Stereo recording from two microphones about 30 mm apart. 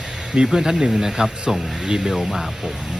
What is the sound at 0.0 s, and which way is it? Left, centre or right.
Speech, right.